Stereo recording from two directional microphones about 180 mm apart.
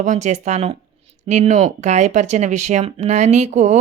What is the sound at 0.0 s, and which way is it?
Speech, 40° right (ahead or behind).